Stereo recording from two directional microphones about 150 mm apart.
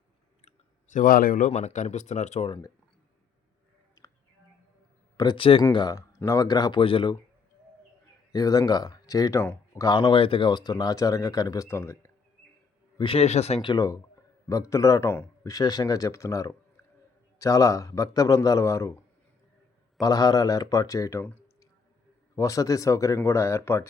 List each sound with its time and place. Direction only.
0.4 s speech: 55° left (ahead or behind)
2.5 s speech: 25° left (ahead or behind)
5.1 s speech: 30° left (ahead or behind)
5.6 s speech: 25° left (ahead or behind)
8.3 s speech: 25° left (ahead or behind)
13.0 s speech: 40° left (ahead or behind)
13.7 s speech: 25° left (ahead or behind)
20.0 s speech: 25° left (ahead or behind)